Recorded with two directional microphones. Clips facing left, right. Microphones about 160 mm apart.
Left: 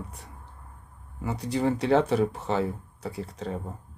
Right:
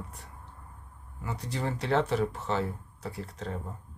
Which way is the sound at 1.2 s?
15° left (ahead or behind).